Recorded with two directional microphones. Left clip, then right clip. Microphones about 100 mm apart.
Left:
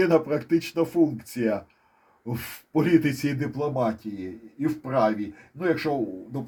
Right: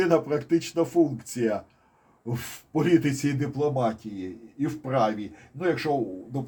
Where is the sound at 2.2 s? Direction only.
75° left (ahead or behind).